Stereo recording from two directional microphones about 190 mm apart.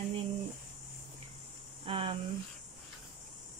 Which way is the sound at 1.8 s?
30° right (ahead or behind).